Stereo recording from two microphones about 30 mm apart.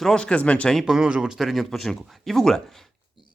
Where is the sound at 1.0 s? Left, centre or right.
Right.